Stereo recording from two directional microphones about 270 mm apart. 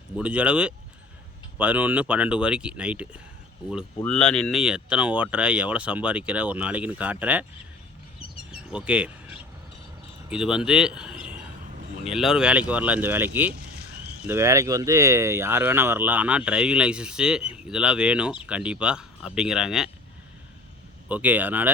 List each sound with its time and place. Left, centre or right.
0.2 s speech: centre
8.5 s speech: centre
13.5 s a sound: right
14.3 s speech: centre
21.1 s speech: centre